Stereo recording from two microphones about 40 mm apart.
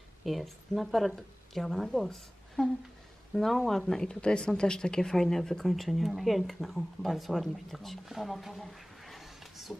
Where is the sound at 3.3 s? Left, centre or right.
Centre.